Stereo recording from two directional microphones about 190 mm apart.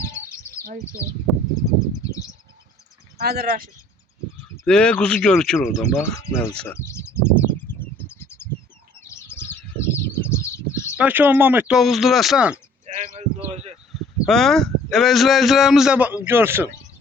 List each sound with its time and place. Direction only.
0.1 s bird: 15° left (ahead or behind)
3.2 s speech: 55° right (ahead or behind)
4.6 s a man's voice: 5° left (ahead or behind)
5.6 s bird: 15° left (ahead or behind)
10.9 s a man's voice: 10° right (ahead or behind)
12.8 s a sound: 35° right (ahead or behind)
14.3 s a man's voice: centre (ahead or behind)